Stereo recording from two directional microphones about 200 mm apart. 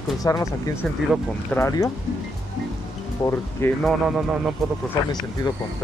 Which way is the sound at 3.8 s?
Centre (ahead or behind).